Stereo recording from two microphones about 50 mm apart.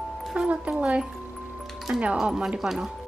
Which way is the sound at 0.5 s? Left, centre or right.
Right.